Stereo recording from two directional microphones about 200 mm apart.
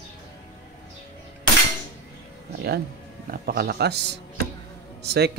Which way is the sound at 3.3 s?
45° right (ahead or behind).